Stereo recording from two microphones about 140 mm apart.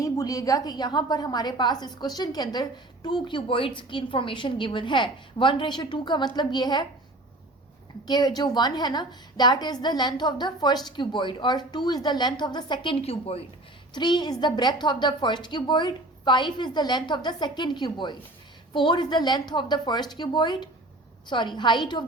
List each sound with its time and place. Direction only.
0.0 s a woman's voice: 25° left (ahead or behind)
8.0 s a woman's voice: 30° left (ahead or behind); by 13.4 s 45° left (ahead or behind)
13.9 s a woman's voice: 30° left (ahead or behind)